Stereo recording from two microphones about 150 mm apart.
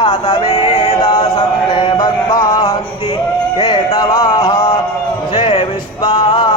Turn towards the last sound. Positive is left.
turn(degrees=30)  # may be behind; listen again after turning